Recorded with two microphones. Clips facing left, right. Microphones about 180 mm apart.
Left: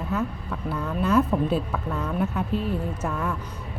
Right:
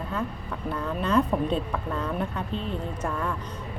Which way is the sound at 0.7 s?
5° left (ahead or behind).